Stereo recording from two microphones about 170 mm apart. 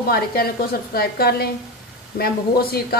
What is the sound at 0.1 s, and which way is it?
A woman's voice, 65° left (ahead or behind).